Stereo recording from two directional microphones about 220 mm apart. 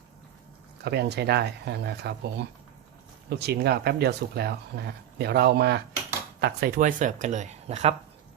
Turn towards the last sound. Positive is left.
turn(degrees=-30)  # may be behind; listen again after turning